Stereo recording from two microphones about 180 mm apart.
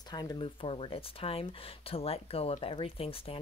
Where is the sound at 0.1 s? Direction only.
20° left (ahead or behind).